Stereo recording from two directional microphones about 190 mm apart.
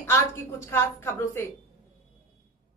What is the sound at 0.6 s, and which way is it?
Speech, 15° left (ahead or behind).